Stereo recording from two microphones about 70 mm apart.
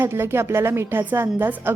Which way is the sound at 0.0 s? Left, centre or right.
Right.